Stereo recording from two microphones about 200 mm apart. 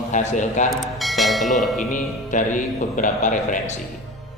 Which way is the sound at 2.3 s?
40° left (ahead or behind).